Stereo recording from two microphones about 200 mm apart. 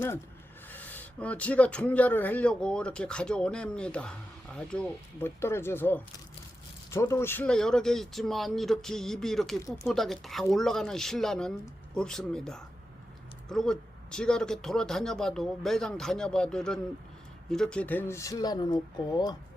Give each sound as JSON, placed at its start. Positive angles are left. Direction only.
{"t": 0.7, "sound": "speech", "side_deg": 10}
{"t": 9.6, "sound": "speech", "side_deg": 15}
{"t": 9.8, "sound": "speech", "side_deg": 0}